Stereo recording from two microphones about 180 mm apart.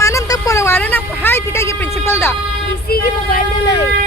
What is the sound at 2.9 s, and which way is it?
Speech, 55° left (ahead or behind).